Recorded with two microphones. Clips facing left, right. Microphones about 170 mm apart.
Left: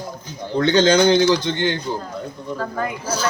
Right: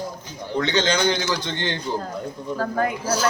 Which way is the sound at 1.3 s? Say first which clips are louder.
Left 7 dB; 15° left (ahead or behind).